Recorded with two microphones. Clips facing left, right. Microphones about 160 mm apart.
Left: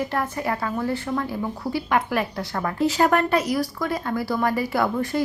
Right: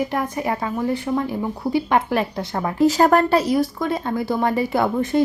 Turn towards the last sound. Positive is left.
turn(degrees=-20)  # may be behind; listen again after turning